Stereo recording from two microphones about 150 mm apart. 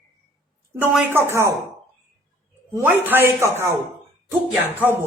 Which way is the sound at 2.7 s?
10° right (ahead or behind).